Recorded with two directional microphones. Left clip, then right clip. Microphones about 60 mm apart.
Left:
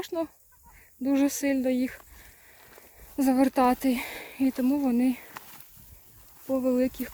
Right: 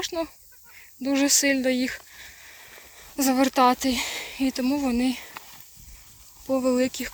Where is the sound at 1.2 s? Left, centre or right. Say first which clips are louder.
Right 6 dB; centre.